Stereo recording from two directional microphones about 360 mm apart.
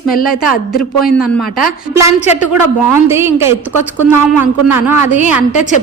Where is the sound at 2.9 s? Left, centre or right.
Centre.